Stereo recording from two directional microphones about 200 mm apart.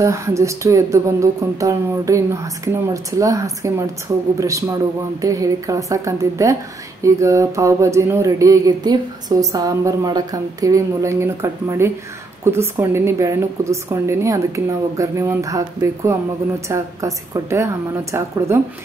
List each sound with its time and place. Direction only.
0.0 s a woman's voice: 15° right (ahead or behind)